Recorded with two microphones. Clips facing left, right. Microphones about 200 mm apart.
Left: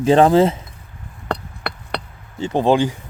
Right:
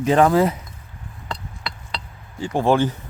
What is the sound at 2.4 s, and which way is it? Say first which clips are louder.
Speech: left 2 dB; 20° left (ahead or behind).